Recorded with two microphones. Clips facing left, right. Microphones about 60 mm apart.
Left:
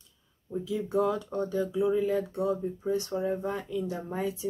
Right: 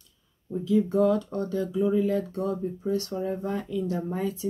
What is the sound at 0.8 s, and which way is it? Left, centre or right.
Speech, centre.